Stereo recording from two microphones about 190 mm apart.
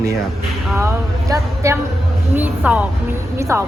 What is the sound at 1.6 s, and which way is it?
Speech, 15° right (ahead or behind).